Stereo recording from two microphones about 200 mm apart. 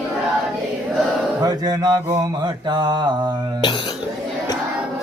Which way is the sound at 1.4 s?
20° right (ahead or behind).